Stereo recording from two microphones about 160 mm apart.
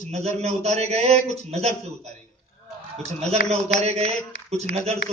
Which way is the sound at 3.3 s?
40° right (ahead or behind).